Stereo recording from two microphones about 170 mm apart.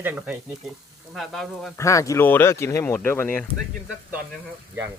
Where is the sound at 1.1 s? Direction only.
Centre (ahead or behind).